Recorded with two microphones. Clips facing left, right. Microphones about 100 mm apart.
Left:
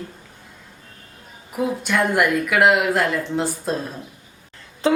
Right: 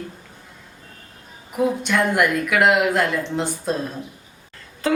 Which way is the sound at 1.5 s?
Centre (ahead or behind).